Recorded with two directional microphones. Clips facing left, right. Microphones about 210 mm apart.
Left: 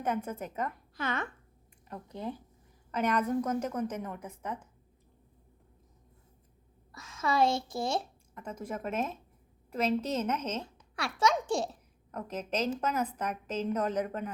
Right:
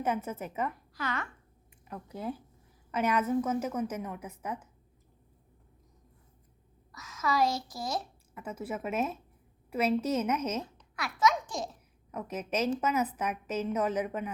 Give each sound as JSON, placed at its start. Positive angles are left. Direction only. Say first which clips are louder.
{"t": 0.0, "sound": "a woman's voice", "louder": "right 1 dB", "side_deg": -5}
{"t": 0.9, "sound": "speech", "louder": "left 3 dB", "side_deg": 20}
{"t": 1.9, "sound": "a woman's voice", "louder": "right 1 dB", "side_deg": -5}
{"t": 6.9, "sound": "a woman's voice", "louder": "left 1 dB", "side_deg": 30}
{"t": 8.4, "sound": "a woman's voice", "louder": "right 1 dB", "side_deg": -5}
{"t": 10.9, "sound": "a child's voice", "louder": "even", "side_deg": 30}
{"t": 12.1, "sound": "a woman's voice", "louder": "right 1 dB", "side_deg": -10}